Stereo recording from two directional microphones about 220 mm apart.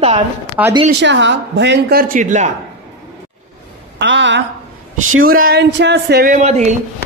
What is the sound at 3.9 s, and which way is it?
Speech, 55° right (ahead or behind).